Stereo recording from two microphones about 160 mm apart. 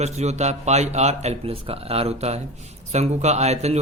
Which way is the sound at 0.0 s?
45° right (ahead or behind).